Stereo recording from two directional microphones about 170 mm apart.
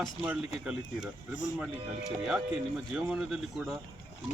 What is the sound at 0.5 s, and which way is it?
Speech, 5° right (ahead or behind).